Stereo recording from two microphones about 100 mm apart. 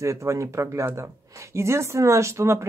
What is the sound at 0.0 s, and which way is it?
Speech, 30° right (ahead or behind).